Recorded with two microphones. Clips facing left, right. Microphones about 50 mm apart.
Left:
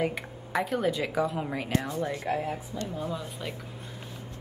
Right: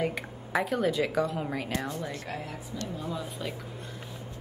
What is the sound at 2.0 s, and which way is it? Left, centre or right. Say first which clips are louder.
Speech: left 6 dB; centre.